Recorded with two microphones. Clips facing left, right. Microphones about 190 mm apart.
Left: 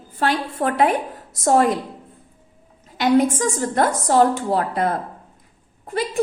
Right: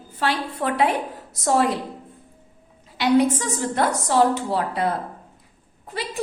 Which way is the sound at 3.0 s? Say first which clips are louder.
Left 2 dB; 45° left (ahead or behind).